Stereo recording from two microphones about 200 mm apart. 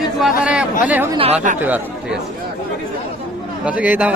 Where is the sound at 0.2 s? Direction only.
5° right (ahead or behind).